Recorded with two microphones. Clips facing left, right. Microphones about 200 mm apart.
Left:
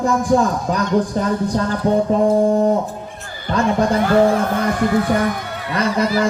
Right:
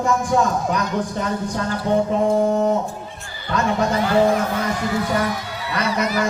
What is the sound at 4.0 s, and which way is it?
Speech, 55° left (ahead or behind).